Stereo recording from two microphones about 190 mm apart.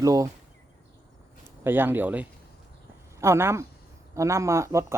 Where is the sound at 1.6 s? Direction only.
10° right (ahead or behind).